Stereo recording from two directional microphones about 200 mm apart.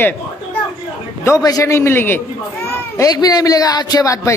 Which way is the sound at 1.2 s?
15° left (ahead or behind).